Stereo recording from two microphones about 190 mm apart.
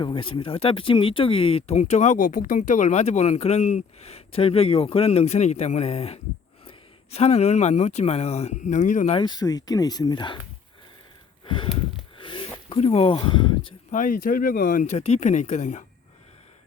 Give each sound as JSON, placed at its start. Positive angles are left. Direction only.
{"t": 0.0, "sound": "speech", "side_deg": 25}
{"t": 9.1, "sound": "speech", "side_deg": 20}
{"t": 11.4, "sound": "a sound", "side_deg": 25}
{"t": 12.2, "sound": "speech", "side_deg": 25}
{"t": 13.9, "sound": "speech", "side_deg": 45}